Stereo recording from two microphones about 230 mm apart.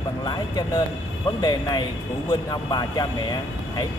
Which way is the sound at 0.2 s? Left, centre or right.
Centre.